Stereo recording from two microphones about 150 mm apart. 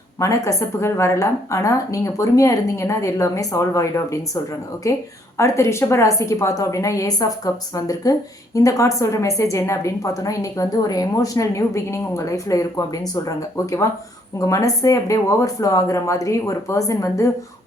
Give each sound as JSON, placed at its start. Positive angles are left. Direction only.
{"t": 0.2, "sound": "a woman's voice", "side_deg": 20}